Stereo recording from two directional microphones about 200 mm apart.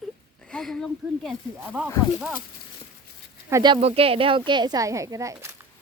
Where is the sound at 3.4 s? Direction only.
20° right (ahead or behind).